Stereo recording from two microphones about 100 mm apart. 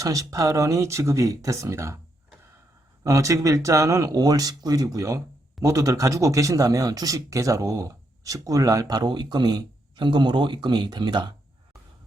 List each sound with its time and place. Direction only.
0.0 s speech: 35° right (ahead or behind)
3.0 s speech: 35° right (ahead or behind); by 11.3 s 50° right (ahead or behind)